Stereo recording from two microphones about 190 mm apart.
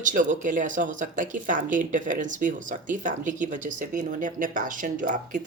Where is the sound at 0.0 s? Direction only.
40° right (ahead or behind).